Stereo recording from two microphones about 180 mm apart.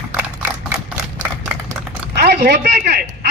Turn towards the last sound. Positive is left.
turn(degrees=-65)  # may be behind; listen again after turning